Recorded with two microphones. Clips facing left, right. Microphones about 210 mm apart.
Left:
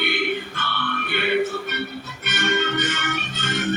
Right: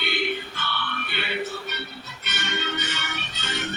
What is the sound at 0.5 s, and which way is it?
Music, 55° left (ahead or behind).